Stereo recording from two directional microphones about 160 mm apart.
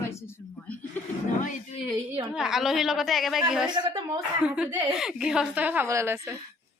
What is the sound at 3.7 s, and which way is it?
Speech, 25° right (ahead or behind).